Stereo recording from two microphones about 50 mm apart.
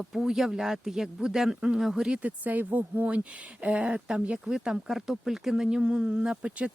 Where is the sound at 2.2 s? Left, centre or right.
Right.